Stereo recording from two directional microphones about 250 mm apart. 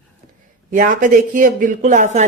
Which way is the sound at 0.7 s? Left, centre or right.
Right.